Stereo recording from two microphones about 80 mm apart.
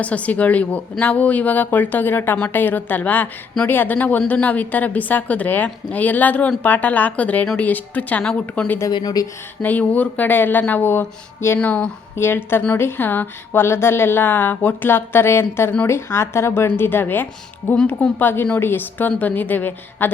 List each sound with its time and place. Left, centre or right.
0.0 s speech: centre
8.2 s a woman's voice: centre
9.2 s speech: left
9.6 s speech: left
11.6 s a woman's voice: centre
12.1 s speech: left